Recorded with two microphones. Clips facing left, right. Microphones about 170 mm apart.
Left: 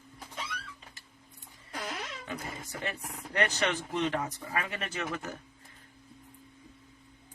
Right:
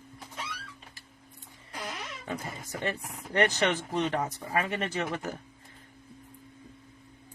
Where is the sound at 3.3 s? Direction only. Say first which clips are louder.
Right 4 dB; 35° right (ahead or behind).